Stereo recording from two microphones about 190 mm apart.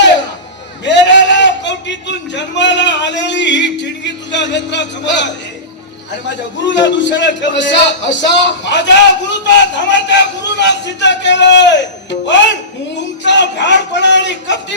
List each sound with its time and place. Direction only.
0.9 s a sound: 70° left (ahead or behind)
6.2 s a man's voice: 70° left (ahead or behind)
13.2 s a man's voice: 65° left (ahead or behind)